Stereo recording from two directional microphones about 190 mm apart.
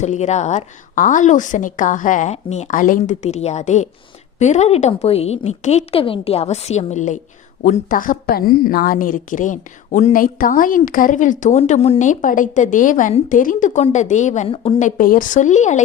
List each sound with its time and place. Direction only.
0.0 s a woman's voice: 35° left (ahead or behind)
14.8 s a woman's voice: 45° left (ahead or behind)